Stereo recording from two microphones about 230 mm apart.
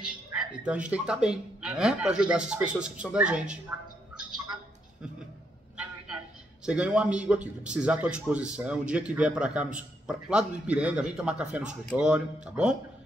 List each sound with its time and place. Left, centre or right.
0.0 s a man's voice: centre
6.6 s a man's voice: centre